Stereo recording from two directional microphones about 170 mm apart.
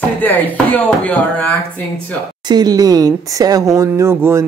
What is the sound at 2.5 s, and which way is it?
Speech, 25° right (ahead or behind).